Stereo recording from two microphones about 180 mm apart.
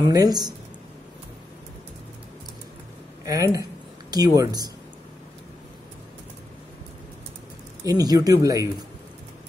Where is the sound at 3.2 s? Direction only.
20° right (ahead or behind).